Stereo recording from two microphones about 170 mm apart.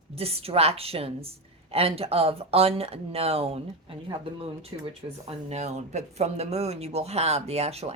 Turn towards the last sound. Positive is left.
turn(degrees=-40)  # may be behind; listen again after turning